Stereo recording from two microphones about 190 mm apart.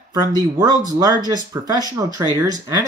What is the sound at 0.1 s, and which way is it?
Speech, 20° right (ahead or behind).